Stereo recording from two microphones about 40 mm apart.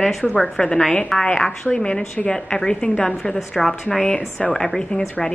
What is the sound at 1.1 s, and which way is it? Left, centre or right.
Speech, centre.